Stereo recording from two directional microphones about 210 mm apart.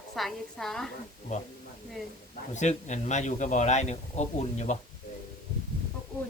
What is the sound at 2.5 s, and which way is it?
A man's voice, 35° left (ahead or behind).